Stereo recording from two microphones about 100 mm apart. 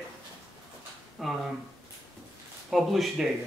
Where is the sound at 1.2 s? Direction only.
Centre (ahead or behind).